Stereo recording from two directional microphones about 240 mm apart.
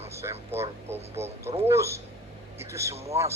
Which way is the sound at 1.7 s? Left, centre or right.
Centre.